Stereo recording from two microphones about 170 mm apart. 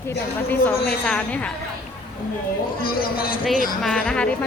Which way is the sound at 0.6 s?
5° left (ahead or behind).